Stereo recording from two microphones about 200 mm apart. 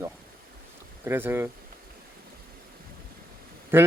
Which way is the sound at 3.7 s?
10° right (ahead or behind).